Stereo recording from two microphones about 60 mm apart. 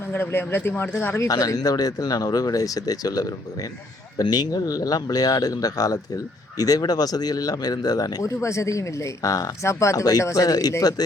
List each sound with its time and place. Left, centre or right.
0.1 s speech: left
1.3 s speech: left
9.6 s speech: left